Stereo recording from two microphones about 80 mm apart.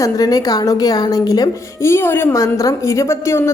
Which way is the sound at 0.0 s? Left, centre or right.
Left.